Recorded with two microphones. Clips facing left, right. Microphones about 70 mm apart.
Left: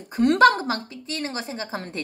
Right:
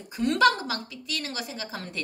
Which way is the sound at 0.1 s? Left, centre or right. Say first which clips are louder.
Left 5 dB; left.